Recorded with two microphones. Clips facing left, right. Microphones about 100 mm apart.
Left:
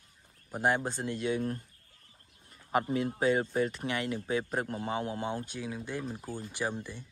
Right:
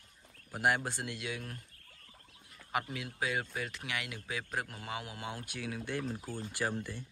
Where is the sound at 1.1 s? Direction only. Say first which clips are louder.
Left 10 dB; 35° left (ahead or behind).